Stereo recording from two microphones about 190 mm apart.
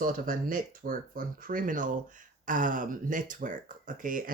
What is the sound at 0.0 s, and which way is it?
Speech, 45° right (ahead or behind).